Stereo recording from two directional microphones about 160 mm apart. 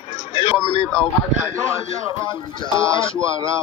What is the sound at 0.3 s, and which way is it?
Vehicle, 35° left (ahead or behind).